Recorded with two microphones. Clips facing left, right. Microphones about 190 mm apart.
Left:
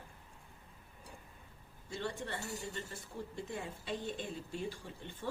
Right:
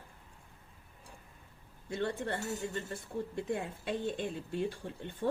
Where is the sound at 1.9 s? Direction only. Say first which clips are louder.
Right 6 dB; 55° right (ahead or behind).